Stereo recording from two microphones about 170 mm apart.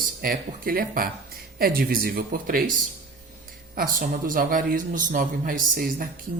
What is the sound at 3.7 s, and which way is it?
A man's voice, 50° right (ahead or behind).